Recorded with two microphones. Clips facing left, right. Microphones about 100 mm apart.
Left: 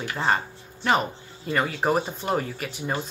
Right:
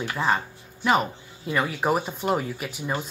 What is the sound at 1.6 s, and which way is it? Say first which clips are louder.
Speech: left 1 dB; 5° right (ahead or behind).